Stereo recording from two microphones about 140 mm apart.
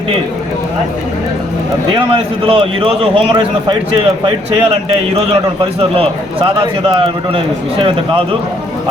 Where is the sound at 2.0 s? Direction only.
40° right (ahead or behind).